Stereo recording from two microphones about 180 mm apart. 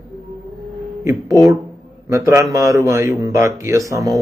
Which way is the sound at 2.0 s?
15° right (ahead or behind).